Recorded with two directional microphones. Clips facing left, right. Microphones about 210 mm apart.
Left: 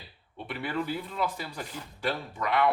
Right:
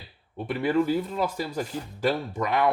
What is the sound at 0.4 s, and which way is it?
Speech, 45° right (ahead or behind).